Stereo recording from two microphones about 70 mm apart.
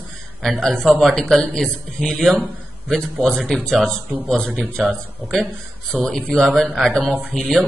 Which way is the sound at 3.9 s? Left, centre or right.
Right.